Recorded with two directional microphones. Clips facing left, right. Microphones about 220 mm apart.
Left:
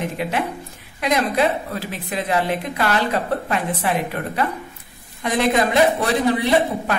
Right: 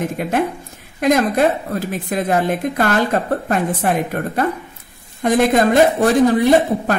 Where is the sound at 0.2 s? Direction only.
50° right (ahead or behind).